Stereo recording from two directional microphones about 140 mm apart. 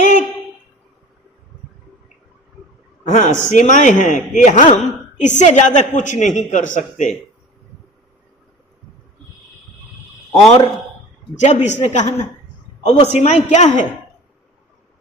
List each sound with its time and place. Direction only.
0.0 s a sound: 65° left (ahead or behind)
3.1 s speech: 60° left (ahead or behind)
4.6 s speech: 50° left (ahead or behind)
11.3 s speech: 55° left (ahead or behind)